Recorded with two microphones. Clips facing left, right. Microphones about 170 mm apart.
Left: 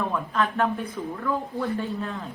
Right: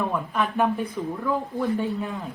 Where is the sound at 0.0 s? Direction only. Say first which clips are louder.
Even; 15° right (ahead or behind).